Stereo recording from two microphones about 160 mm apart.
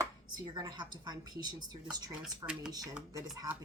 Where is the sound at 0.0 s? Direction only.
25° right (ahead or behind).